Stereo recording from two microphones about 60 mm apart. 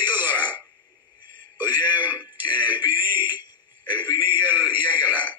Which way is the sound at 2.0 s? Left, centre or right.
Right.